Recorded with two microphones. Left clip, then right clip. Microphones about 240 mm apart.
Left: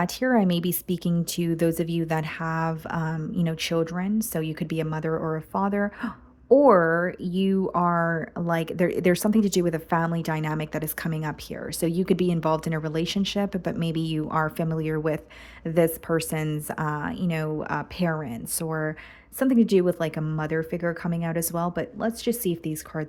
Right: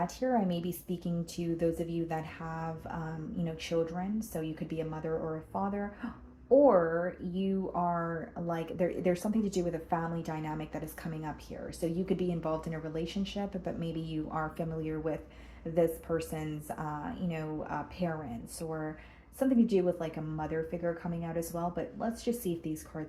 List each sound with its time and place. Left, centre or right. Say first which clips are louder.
0.0 s speech: left 8 dB; left